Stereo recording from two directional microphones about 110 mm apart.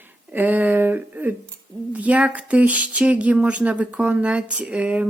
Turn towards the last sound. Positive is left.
turn(degrees=-10)  # may be behind; listen again after turning